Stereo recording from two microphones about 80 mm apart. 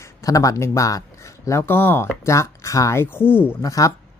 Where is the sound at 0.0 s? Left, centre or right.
Left.